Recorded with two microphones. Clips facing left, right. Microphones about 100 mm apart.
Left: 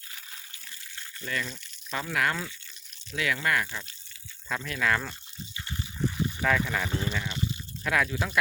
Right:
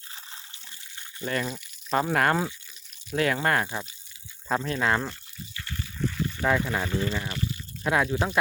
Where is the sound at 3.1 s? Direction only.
40° right (ahead or behind).